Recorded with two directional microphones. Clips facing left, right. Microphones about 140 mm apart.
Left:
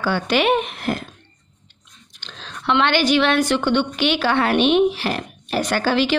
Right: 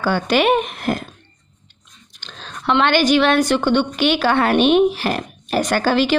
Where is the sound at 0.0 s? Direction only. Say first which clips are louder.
Right 2 dB; 45° right (ahead or behind).